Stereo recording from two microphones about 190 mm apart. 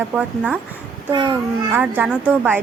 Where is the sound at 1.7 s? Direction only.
10° right (ahead or behind).